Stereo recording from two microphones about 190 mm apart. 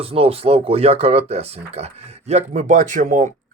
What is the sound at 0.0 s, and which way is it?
A man's voice, 30° right (ahead or behind).